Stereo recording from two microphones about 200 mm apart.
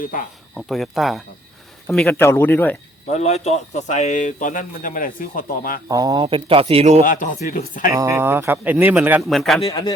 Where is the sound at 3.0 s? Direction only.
35° left (ahead or behind).